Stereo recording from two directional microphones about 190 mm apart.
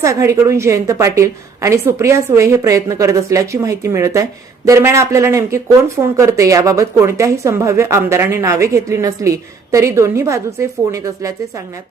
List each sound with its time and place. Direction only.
0.0 s a woman's voice: 15° right (ahead or behind)